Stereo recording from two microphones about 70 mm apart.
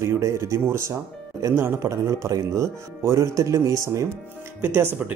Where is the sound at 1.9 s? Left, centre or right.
Right.